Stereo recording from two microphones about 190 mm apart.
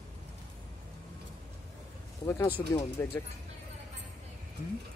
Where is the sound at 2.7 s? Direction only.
10° left (ahead or behind).